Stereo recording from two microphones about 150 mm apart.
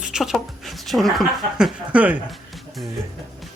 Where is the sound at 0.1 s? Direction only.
Centre (ahead or behind).